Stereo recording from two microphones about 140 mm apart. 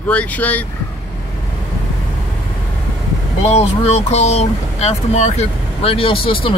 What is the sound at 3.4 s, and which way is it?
Speech, 50° left (ahead or behind).